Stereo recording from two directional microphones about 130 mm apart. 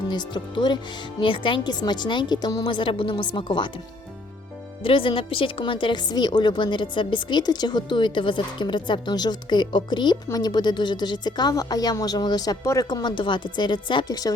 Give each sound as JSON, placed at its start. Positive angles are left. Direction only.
{"t": 0.1, "sound": "a woman's voice", "side_deg": 35}
{"t": 2.6, "sound": "a woman's voice", "side_deg": 40}
{"t": 4.8, "sound": "a woman's voice", "side_deg": 45}